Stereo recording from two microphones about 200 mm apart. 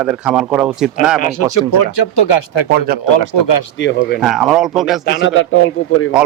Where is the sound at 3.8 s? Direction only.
65° left (ahead or behind).